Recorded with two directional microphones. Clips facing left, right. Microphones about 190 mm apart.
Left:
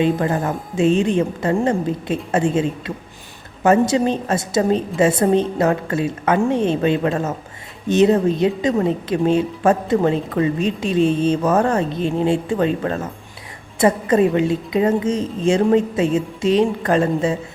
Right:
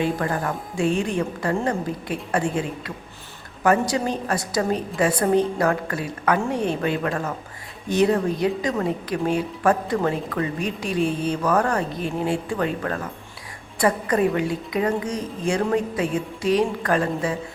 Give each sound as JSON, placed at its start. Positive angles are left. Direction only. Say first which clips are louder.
{"t": 0.0, "sound": "a woman's voice", "louder": "left 5 dB", "side_deg": 20}